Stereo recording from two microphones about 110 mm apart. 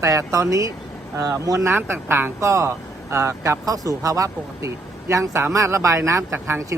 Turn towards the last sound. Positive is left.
turn(degrees=-25)  # may be behind; listen again after turning